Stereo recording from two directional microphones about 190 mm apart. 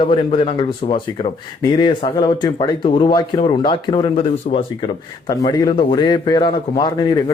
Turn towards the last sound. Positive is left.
turn(degrees=20)  # may be behind; listen again after turning